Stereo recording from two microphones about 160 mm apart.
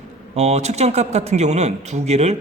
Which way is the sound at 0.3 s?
45° right (ahead or behind).